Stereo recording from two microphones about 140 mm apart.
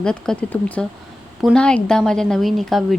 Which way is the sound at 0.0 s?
5° left (ahead or behind).